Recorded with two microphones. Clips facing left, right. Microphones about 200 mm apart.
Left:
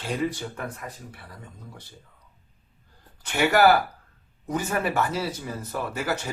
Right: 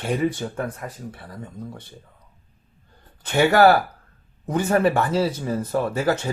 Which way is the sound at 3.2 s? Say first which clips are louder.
Right 4 dB; 55° right (ahead or behind).